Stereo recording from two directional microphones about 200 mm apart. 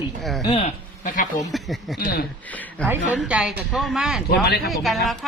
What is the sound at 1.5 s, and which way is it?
Speech, centre (ahead or behind).